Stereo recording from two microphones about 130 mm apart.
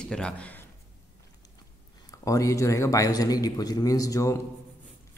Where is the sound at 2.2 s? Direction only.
25° left (ahead or behind).